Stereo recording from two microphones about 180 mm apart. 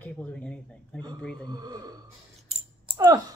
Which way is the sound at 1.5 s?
20° right (ahead or behind).